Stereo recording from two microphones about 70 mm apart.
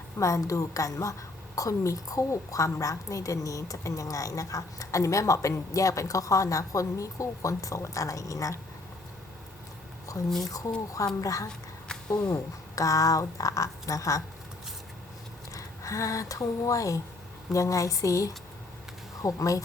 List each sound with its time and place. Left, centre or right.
0.2 s a woman's voice: left
10.4 s a woman's voice: left
11.4 s a sound: centre
12.1 s a woman's voice: left
15.5 s a woman's voice: left